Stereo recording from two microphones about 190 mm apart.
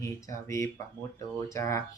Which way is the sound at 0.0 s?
15° left (ahead or behind).